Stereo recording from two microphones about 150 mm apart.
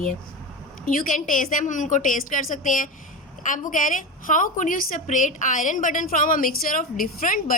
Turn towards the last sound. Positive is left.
turn(degrees=70)  # may be behind; listen again after turning